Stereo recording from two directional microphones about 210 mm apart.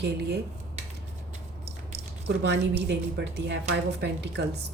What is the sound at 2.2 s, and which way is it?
Speech, 55° right (ahead or behind).